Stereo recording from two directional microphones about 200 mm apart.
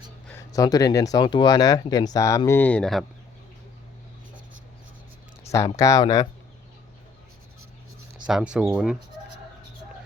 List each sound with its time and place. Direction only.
0.5 s speech: 15° left (ahead or behind)
5.4 s speech: 15° left (ahead or behind)
8.3 s speech: 5° right (ahead or behind)